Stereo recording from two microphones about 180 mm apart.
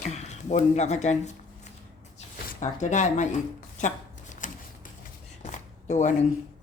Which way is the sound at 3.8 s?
45° left (ahead or behind).